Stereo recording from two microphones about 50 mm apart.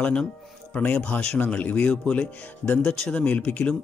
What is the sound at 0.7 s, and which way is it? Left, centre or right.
Speech, left.